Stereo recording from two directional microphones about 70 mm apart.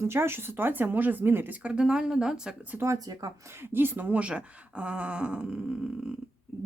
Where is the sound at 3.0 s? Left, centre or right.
Right.